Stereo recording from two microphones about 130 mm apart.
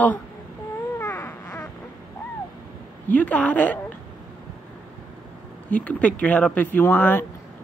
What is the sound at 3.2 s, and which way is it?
Speech, 10° left (ahead or behind).